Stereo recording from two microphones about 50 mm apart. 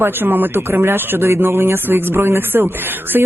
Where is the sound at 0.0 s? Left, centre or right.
Right.